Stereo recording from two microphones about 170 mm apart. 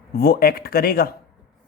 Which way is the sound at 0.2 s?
60° left (ahead or behind).